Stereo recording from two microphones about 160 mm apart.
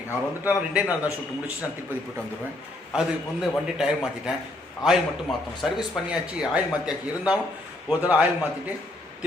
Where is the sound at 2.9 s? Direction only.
5° right (ahead or behind).